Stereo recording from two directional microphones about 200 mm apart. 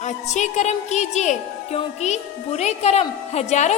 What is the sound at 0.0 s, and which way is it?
Speech, 35° left (ahead or behind).